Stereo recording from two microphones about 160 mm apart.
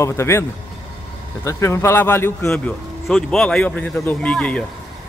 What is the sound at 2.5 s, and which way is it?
A man's voice, 5° left (ahead or behind).